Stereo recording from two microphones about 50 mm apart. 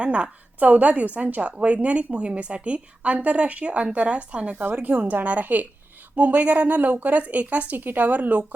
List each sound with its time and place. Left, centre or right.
0.0 s a woman's voice: right
4.6 s speech: right